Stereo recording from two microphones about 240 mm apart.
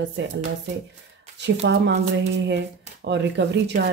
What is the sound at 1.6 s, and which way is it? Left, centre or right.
Speech, right.